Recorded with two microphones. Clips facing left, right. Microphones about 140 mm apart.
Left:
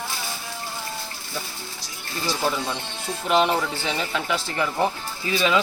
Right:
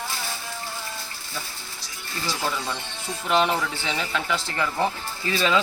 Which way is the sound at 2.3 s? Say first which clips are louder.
Left 3 dB; 20° left (ahead or behind).